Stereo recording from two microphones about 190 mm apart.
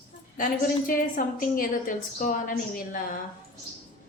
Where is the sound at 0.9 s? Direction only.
45° left (ahead or behind).